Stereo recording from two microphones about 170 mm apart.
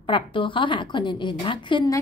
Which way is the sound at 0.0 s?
30° left (ahead or behind).